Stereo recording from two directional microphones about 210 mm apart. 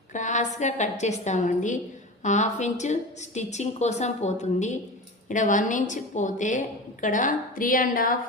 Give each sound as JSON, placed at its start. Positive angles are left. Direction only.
{"t": 0.1, "sound": "a woman's voice", "side_deg": 35}